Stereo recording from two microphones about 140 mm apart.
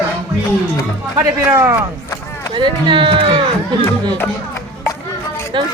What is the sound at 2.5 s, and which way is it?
Speech, 35° right (ahead or behind).